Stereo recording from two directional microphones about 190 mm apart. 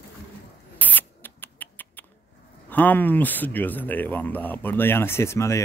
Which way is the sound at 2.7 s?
10° left (ahead or behind).